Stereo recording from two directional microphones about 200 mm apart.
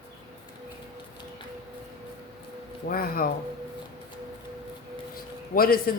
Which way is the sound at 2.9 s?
45° left (ahead or behind).